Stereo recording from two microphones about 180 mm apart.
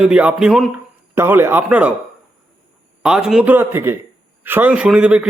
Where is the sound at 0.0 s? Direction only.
5° right (ahead or behind).